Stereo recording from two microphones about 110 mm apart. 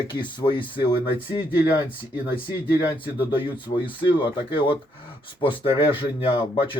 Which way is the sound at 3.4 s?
45° left (ahead or behind).